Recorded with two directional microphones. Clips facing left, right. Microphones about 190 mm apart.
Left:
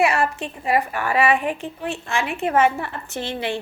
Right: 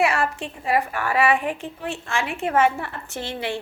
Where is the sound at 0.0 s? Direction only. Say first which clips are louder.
Left 2 dB; 15° left (ahead or behind).